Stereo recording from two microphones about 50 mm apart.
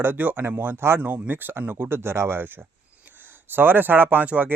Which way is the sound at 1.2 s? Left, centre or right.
Right.